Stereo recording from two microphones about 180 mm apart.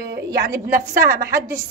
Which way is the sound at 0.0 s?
60° right (ahead or behind).